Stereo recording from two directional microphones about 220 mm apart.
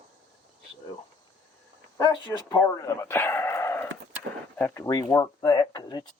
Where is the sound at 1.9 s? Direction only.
15° left (ahead or behind).